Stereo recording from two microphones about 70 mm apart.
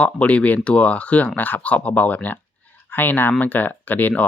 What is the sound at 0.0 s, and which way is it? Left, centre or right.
Speech, centre.